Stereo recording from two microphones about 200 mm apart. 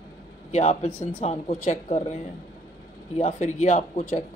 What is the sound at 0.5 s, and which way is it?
Speech, 35° left (ahead or behind).